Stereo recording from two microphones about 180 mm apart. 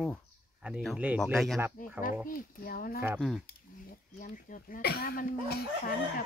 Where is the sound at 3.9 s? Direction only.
50° left (ahead or behind).